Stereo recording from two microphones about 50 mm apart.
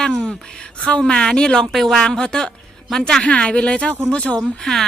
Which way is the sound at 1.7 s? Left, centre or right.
Centre.